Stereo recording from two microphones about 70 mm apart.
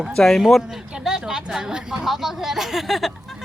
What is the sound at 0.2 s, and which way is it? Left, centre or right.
Speech, centre.